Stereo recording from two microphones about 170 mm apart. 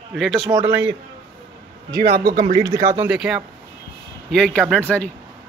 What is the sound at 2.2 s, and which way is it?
Speech, 50° right (ahead or behind).